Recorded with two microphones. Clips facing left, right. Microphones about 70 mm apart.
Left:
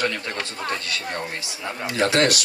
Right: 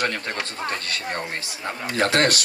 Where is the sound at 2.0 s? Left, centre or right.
Right.